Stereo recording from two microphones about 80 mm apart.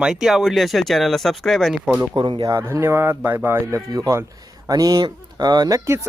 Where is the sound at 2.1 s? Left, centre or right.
Right.